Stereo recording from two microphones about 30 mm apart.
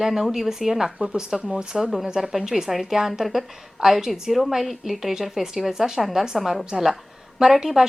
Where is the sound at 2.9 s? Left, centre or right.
Centre.